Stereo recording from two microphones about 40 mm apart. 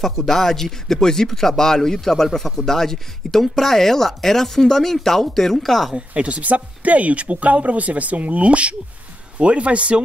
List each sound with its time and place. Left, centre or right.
0.0 s speech: centre
5.9 s speech: right